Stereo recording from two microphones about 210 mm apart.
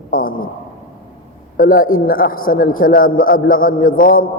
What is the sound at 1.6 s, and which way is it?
A woman's voice, 40° left (ahead or behind).